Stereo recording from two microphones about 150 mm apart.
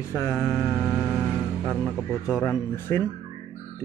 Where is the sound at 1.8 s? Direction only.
5° right (ahead or behind).